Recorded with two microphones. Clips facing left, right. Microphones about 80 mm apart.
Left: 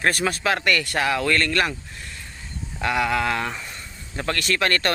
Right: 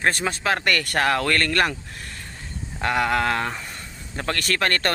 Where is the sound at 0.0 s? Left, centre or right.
Right.